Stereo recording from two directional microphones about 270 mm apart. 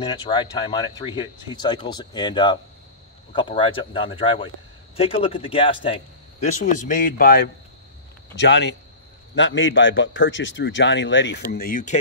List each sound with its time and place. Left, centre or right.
0.0 s a man's voice: centre